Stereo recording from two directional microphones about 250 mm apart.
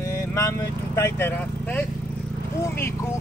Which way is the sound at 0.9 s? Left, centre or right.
Centre.